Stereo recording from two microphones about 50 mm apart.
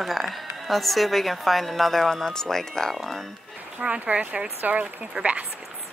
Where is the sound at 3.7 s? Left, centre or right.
Right.